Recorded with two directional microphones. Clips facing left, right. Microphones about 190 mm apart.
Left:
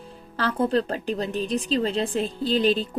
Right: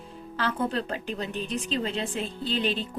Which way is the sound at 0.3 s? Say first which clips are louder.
Left 5 dB; 35° left (ahead or behind).